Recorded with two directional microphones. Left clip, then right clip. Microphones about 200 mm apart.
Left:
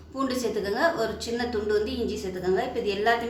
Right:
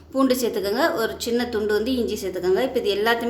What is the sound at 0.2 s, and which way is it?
A woman's voice, 45° right (ahead or behind).